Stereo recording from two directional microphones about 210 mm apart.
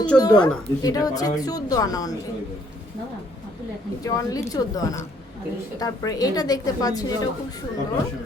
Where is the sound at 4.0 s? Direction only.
15° left (ahead or behind).